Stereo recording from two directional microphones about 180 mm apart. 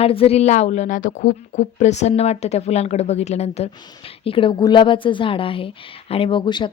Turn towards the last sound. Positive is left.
turn(degrees=25)  # may be behind; listen again after turning